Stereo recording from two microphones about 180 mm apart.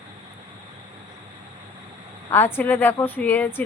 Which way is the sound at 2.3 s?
10° left (ahead or behind).